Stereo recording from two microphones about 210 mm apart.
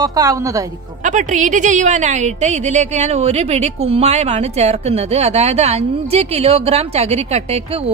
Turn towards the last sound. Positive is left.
turn(degrees=-30)  # may be behind; listen again after turning